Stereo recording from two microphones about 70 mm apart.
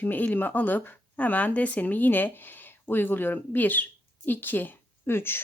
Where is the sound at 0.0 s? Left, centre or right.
Left.